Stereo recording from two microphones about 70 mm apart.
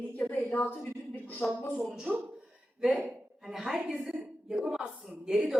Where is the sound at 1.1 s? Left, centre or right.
Left.